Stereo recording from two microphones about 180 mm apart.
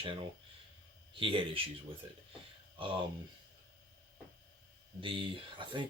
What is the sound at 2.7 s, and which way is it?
Speech, 30° right (ahead or behind).